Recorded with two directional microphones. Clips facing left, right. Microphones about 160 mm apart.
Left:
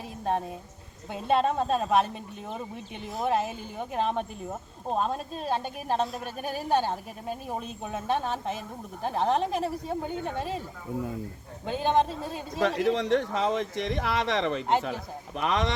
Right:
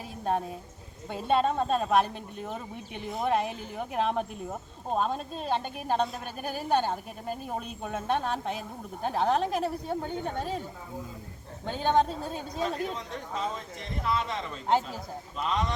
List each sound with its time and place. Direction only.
0.3 s speech: centre (ahead or behind)
11.6 s speech: 5° left (ahead or behind)
12.5 s speech: 80° left